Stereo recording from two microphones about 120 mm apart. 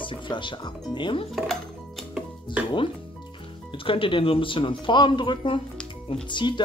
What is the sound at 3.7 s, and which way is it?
Speech, 50° left (ahead or behind).